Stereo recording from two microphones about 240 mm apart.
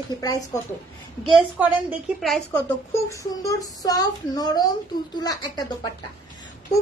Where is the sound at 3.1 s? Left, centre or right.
Centre.